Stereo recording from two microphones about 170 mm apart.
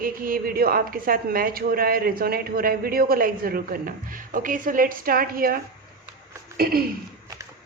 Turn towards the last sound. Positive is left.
turn(degrees=-65)  # may be behind; listen again after turning